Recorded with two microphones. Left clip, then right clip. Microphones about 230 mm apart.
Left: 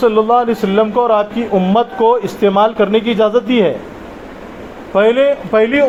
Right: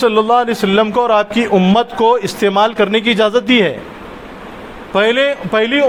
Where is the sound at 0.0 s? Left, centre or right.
Right.